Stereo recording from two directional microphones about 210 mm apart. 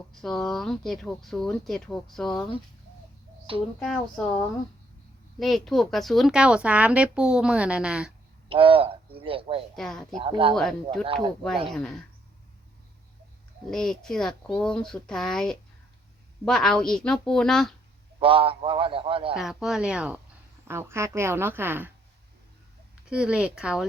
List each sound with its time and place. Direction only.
0.1 s speech: centre (ahead or behind)
3.8 s speech: centre (ahead or behind)
8.4 s speech: 25° right (ahead or behind)
9.7 s speech: centre (ahead or behind)
10.2 s a man's voice: 25° right (ahead or behind)
11.7 s speech: centre (ahead or behind)
13.7 s speech: centre (ahead or behind)
18.2 s a man's voice: 25° right (ahead or behind)
19.3 s speech: centre (ahead or behind)
23.0 s speech: 5° right (ahead or behind)